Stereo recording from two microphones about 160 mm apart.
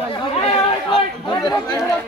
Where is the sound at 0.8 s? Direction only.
30° left (ahead or behind).